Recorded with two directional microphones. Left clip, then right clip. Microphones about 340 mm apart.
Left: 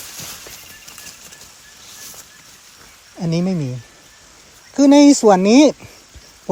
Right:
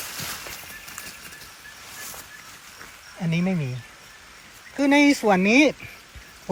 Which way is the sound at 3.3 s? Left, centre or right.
Left.